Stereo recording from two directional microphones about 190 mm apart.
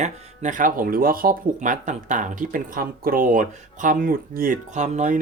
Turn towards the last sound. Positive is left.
turn(degrees=-40)  # may be behind; listen again after turning